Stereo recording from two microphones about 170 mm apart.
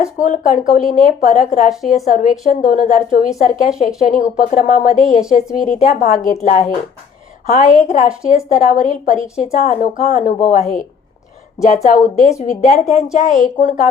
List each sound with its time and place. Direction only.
0.2 s a woman's voice: 50° left (ahead or behind)
11.6 s a woman's voice: 45° left (ahead or behind)